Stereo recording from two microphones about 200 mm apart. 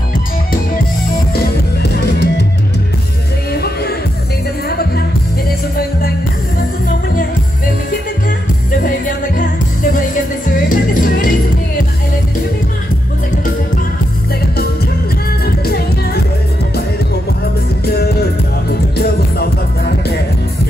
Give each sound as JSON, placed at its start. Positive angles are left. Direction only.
{"t": 1.3, "sound": "music", "side_deg": 55}
{"t": 5.8, "sound": "music", "side_deg": 50}
{"t": 8.7, "sound": "music", "side_deg": 45}
{"t": 15.4, "sound": "music", "side_deg": 50}
{"t": 17.8, "sound": "music", "side_deg": 50}